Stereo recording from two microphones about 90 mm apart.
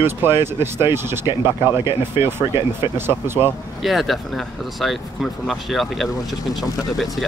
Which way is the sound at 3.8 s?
Centre (ahead or behind).